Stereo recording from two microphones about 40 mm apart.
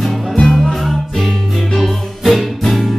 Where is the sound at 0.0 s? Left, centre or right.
Centre.